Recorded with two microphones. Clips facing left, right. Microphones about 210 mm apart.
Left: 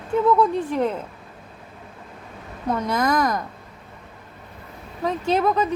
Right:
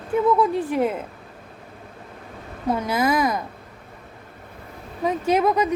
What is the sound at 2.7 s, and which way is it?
Speech, 5° right (ahead or behind).